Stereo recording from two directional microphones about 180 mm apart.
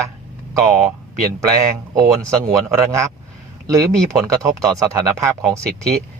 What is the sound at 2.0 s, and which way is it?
Speech, 20° right (ahead or behind).